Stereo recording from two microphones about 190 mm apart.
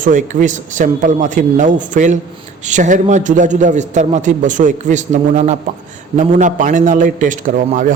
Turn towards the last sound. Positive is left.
turn(degrees=-45)  # may be behind; listen again after turning